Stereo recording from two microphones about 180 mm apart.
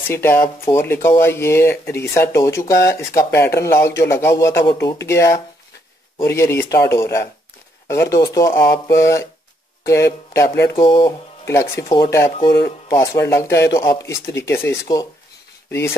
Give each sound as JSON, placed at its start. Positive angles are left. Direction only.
{"t": 0.1, "sound": "speech", "side_deg": 10}